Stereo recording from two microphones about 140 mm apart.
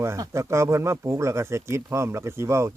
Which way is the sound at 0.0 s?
20° right (ahead or behind).